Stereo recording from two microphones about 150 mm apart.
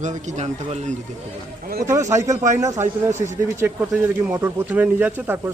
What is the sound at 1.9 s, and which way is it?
Speech, 20° right (ahead or behind).